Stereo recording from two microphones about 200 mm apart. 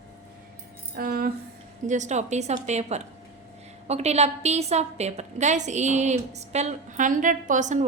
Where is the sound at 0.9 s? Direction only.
50° right (ahead or behind).